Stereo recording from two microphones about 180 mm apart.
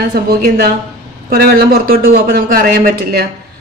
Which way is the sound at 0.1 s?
55° right (ahead or behind).